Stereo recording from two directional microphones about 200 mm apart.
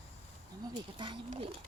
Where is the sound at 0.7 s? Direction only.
25° right (ahead or behind).